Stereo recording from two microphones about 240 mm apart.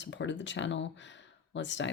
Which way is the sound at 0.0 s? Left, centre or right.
Left.